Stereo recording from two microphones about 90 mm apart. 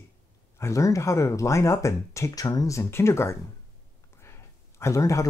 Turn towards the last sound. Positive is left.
turn(degrees=35)  # may be behind; listen again after turning